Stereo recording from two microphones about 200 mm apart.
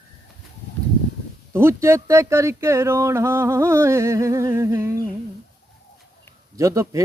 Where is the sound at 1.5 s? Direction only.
15° right (ahead or behind).